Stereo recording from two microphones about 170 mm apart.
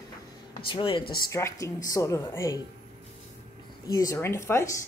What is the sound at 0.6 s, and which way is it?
Speech, 30° left (ahead or behind).